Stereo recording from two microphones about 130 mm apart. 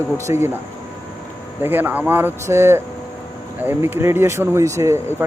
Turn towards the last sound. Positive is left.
turn(degrees=-20)  # may be behind; listen again after turning